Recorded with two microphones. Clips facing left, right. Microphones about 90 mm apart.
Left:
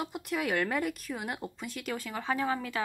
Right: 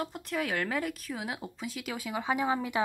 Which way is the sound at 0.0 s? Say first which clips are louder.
Even; 5° left (ahead or behind).